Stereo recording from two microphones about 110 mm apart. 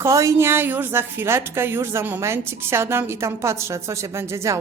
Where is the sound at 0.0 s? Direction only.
30° right (ahead or behind).